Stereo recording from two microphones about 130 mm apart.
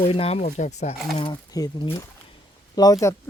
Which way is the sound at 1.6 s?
30° left (ahead or behind).